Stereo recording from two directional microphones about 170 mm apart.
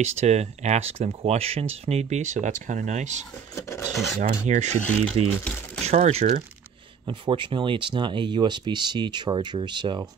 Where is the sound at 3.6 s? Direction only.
15° left (ahead or behind).